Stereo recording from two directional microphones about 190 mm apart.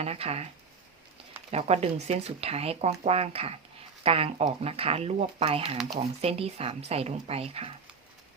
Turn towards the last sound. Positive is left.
turn(degrees=-30)  # may be behind; listen again after turning